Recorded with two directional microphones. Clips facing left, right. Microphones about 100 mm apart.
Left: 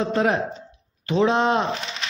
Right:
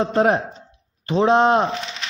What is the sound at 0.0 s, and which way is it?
A man's voice, 40° right (ahead or behind).